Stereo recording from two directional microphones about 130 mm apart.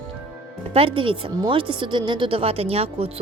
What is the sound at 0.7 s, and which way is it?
A woman's voice, 45° right (ahead or behind).